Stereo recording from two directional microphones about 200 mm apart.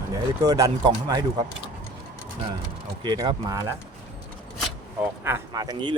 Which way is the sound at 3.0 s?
25° right (ahead or behind).